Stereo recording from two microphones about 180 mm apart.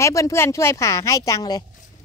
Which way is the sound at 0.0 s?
15° left (ahead or behind).